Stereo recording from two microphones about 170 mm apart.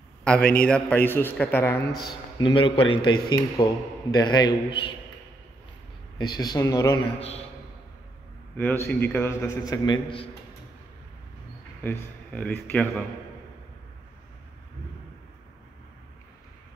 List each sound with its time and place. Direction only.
0.2 s a sound: 5° left (ahead or behind)
0.7 s a man's voice: 5° left (ahead or behind)
2.3 s a man's voice: 30° left (ahead or behind)
6.1 s speech: 25° left (ahead or behind)
7.2 s a man's voice: 40° left (ahead or behind)
8.5 s a man's voice: 10° left (ahead or behind); by 10.3 s 30° left (ahead or behind)
11.8 s a man's voice: 10° left (ahead or behind)